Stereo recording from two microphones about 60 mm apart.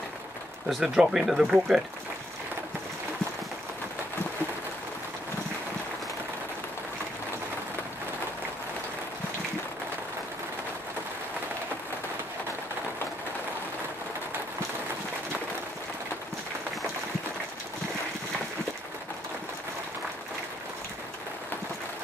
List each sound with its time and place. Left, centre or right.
0.7 s speech: centre